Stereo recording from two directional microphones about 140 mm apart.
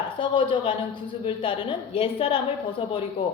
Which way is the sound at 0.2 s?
35° left (ahead or behind).